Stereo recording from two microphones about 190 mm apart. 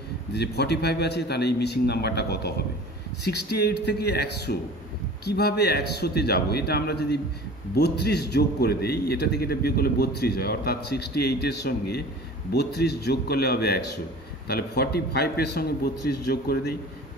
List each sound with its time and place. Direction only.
0.3 s a man's voice: 60° left (ahead or behind)